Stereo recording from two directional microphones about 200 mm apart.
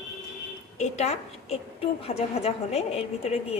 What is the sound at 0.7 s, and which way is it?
A woman's voice, 35° left (ahead or behind).